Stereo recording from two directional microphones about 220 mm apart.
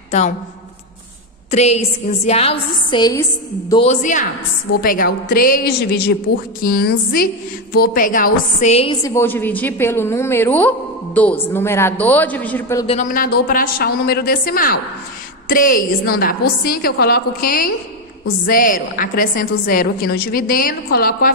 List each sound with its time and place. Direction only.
1.5 s a woman's voice: 30° left (ahead or behind)
3.7 s a woman's voice: 30° left (ahead or behind)
9.0 s a woman's voice: 10° left (ahead or behind)
12.8 s a woman's voice: 30° left (ahead or behind)